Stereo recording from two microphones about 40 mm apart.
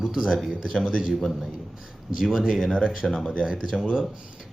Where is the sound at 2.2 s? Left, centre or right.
Centre.